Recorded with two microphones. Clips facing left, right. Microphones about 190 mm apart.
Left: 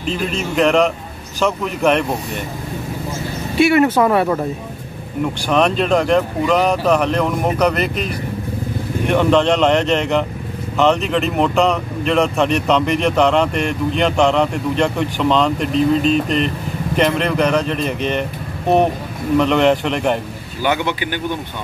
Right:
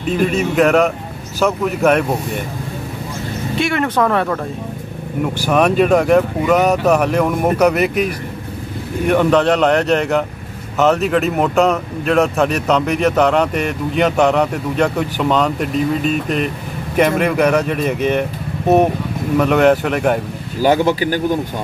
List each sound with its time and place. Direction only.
0.3 s speech: 5° right (ahead or behind)
3.5 s speech: 5° left (ahead or behind)
5.2 s speech: 5° right (ahead or behind)
19.3 s speech: 5° right (ahead or behind)
20.6 s speech: 40° right (ahead or behind)